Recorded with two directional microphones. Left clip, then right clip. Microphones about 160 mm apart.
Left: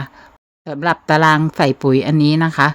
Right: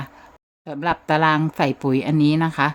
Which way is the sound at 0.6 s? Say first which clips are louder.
Left 5 dB; 30° left (ahead or behind).